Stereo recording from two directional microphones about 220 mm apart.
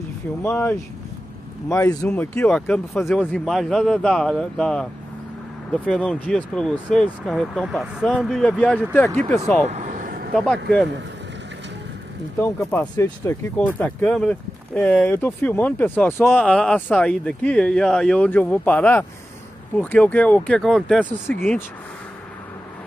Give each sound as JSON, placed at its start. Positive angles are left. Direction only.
{"t": 0.4, "sound": "speech", "side_deg": 10}
{"t": 9.7, "sound": "vehicle", "side_deg": -35}
{"t": 10.3, "sound": "speech", "side_deg": 5}
{"t": 12.4, "sound": "speech", "side_deg": 10}